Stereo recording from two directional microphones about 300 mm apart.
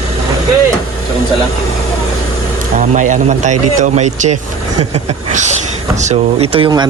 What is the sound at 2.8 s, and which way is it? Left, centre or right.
A man's voice, right.